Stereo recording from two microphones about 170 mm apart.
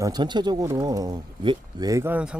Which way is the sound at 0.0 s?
25° right (ahead or behind).